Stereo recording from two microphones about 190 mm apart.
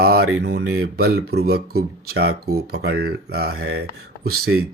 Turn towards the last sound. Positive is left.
turn(degrees=-55)  # may be behind; listen again after turning